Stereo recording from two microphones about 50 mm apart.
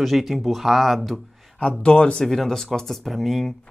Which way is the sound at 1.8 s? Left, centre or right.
Centre.